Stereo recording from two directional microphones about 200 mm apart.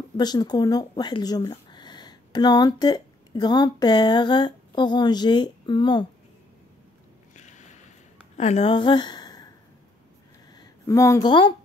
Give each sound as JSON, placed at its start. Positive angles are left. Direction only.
{"t": 0.2, "sound": "speech", "side_deg": 20}
{"t": 7.3, "sound": "a sound", "side_deg": 35}
{"t": 8.4, "sound": "a woman's voice", "side_deg": 30}
{"t": 10.5, "sound": "speech", "side_deg": 20}